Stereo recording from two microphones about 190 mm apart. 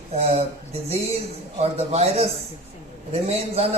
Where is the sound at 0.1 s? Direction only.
35° right (ahead or behind).